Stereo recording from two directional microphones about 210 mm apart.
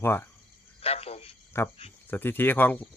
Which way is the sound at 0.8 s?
30° left (ahead or behind).